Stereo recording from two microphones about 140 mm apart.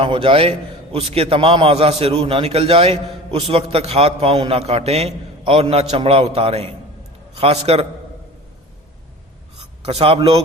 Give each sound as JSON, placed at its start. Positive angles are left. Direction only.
{"t": 0.0, "sound": "a man's voice", "side_deg": -40}
{"t": 9.6, "sound": "a sound", "side_deg": -45}
{"t": 10.2, "sound": "a man's voice", "side_deg": -40}